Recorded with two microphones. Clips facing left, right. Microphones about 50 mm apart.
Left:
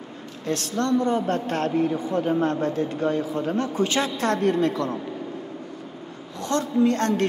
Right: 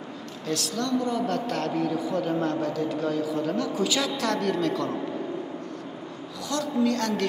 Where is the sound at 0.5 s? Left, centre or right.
Left.